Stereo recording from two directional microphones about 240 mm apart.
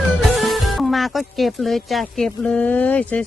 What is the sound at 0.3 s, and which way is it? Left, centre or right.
Speech, centre.